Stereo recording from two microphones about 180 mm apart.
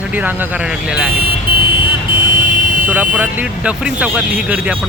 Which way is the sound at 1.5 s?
55° right (ahead or behind).